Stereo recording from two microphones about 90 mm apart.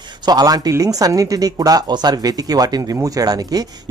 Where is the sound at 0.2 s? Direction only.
50° right (ahead or behind).